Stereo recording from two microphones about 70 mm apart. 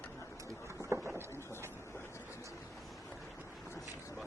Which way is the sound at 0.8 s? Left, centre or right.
Right.